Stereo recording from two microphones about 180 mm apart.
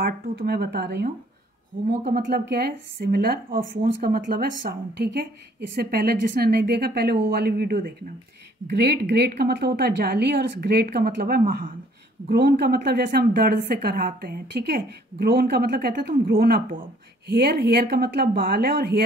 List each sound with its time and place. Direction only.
0.0 s a woman's voice: 60° right (ahead or behind)